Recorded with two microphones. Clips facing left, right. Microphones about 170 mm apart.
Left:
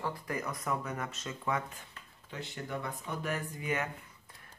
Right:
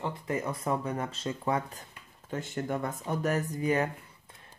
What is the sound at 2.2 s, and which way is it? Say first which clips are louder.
Speech: right 8 dB; 45° right (ahead or behind).